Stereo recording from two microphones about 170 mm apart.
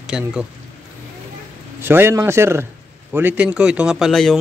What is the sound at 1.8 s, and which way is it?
Speech, 15° right (ahead or behind).